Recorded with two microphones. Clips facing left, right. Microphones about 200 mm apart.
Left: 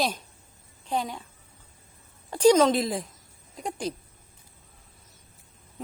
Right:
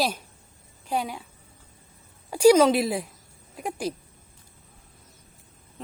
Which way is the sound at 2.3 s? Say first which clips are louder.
Right 2 dB; 10° right (ahead or behind).